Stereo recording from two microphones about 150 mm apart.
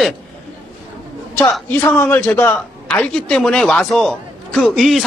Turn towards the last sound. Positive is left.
turn(degrees=0)  # may be behind; listen again after turning